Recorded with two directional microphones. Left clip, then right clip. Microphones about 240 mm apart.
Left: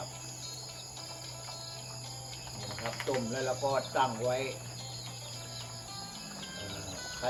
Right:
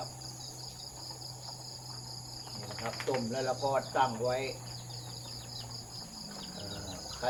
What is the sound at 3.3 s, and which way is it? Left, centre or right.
Speech, centre.